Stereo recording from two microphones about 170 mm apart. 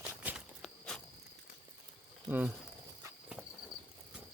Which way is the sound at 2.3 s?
10° right (ahead or behind).